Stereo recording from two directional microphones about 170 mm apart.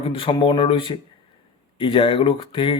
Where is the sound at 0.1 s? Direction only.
30° left (ahead or behind).